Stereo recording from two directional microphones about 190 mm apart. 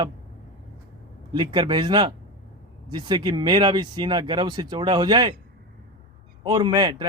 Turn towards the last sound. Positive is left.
turn(degrees=-20)  # may be behind; listen again after turning